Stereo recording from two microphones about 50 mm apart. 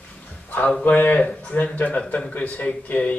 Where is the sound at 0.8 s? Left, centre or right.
Left.